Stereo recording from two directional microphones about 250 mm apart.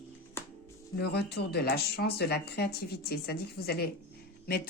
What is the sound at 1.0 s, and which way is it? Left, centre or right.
Speech, left.